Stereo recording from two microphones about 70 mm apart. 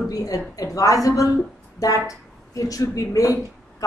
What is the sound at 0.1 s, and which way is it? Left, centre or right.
A woman's voice, left.